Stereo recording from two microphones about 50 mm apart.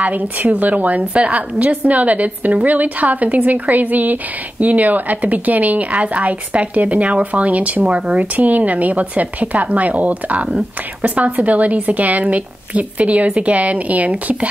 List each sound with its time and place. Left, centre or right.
0.0 s a woman's voice: right